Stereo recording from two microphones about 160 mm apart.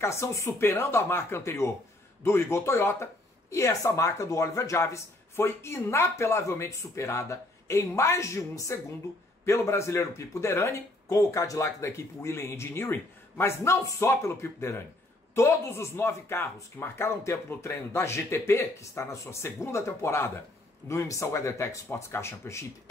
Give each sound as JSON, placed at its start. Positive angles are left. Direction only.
{"t": 0.0, "sound": "speech", "side_deg": 15}